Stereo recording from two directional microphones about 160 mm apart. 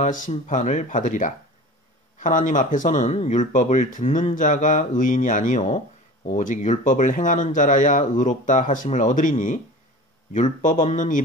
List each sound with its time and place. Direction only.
0.0 s speech: 50° left (ahead or behind)